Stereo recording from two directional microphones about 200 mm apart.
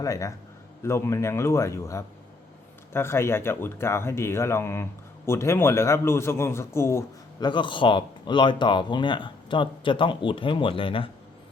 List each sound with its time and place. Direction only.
0.0 s speech: 15° left (ahead or behind)